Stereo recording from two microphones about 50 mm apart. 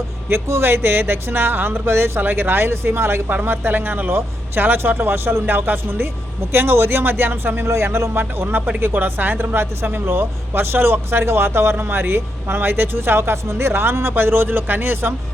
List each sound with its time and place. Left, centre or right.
0.3 s speech: right
3.2 s speech: right
6.5 s speech: right
7.7 s speech: right